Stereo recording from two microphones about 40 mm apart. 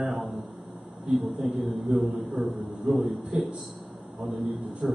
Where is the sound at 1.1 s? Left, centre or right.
Centre.